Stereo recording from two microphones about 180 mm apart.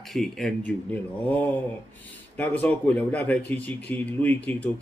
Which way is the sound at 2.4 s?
10° left (ahead or behind).